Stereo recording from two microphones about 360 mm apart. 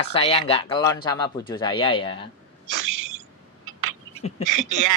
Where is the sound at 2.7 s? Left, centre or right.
Right.